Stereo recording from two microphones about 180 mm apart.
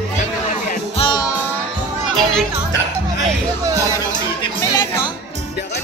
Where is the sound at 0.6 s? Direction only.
30° left (ahead or behind).